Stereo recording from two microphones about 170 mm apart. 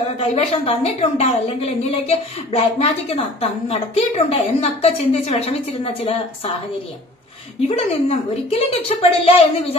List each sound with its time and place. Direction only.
0.2 s a woman's voice: 35° left (ahead or behind)
7.6 s a woman's voice: 35° left (ahead or behind)